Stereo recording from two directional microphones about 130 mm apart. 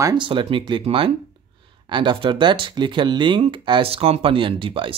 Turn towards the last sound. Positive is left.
turn(degrees=-45)  # may be behind; listen again after turning